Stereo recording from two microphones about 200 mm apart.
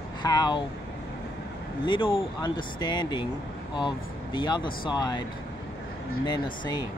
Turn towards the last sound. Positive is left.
turn(degrees=20)  # may be behind; listen again after turning